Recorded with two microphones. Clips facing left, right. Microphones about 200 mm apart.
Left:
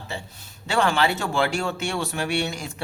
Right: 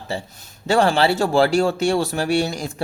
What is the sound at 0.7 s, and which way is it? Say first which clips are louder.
Speech: right 5 dB; 35° right (ahead or behind).